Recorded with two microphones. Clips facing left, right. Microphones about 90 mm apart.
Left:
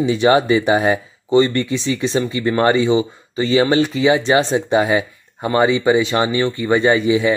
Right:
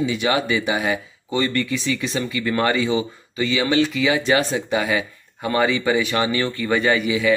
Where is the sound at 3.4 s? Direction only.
35° left (ahead or behind).